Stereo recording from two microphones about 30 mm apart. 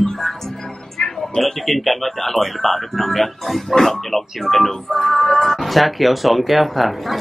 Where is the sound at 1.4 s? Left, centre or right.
Centre.